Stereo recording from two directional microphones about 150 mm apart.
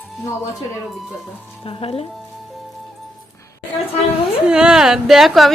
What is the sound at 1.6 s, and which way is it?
Speech, 40° left (ahead or behind).